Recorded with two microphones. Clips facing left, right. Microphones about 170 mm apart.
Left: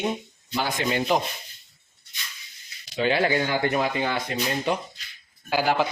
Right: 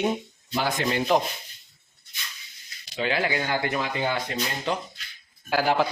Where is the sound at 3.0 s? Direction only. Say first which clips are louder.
Left 4 dB; 30° left (ahead or behind).